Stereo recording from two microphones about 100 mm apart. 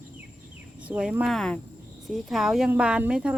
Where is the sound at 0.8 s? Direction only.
10° right (ahead or behind).